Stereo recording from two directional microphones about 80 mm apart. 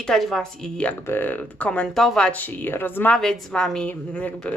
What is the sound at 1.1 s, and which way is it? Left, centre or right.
A woman's voice, left.